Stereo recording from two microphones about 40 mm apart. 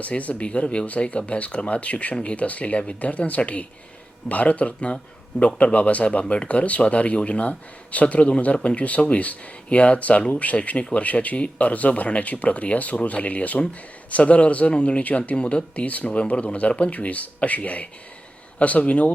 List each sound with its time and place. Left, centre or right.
0.0 s speech: left